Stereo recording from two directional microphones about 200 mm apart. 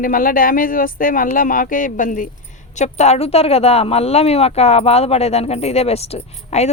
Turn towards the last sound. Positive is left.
turn(degrees=30)  # may be behind; listen again after turning